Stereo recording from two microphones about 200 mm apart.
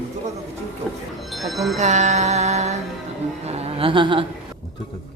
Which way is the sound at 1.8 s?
35° right (ahead or behind).